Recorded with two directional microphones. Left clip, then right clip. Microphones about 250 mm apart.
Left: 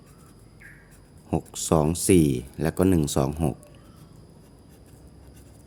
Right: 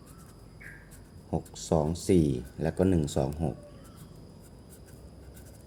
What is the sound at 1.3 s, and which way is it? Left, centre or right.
Speech, left.